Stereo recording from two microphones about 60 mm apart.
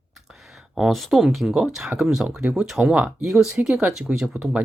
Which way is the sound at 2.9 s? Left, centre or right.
Right.